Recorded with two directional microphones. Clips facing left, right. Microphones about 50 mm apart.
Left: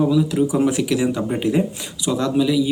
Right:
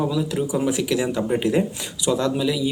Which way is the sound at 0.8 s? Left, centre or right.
Centre.